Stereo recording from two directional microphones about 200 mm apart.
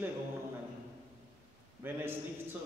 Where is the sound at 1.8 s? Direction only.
10° right (ahead or behind).